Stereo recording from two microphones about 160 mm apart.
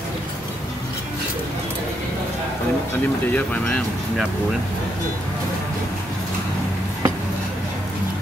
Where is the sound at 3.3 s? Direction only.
10° left (ahead or behind).